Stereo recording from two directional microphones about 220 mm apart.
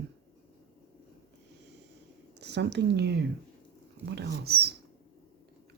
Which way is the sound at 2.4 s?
50° right (ahead or behind).